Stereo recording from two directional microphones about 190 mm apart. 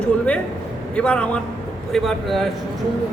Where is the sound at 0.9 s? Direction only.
5° left (ahead or behind).